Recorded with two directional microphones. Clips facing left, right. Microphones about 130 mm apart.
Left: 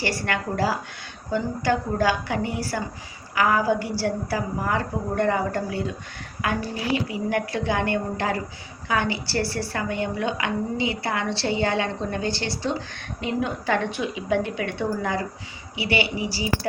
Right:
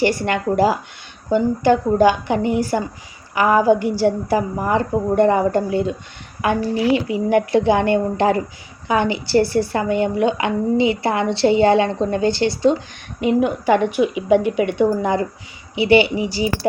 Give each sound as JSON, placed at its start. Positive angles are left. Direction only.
{"t": 0.0, "sound": "a woman's voice", "side_deg": -20}